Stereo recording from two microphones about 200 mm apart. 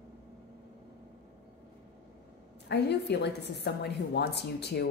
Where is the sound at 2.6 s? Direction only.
55° left (ahead or behind).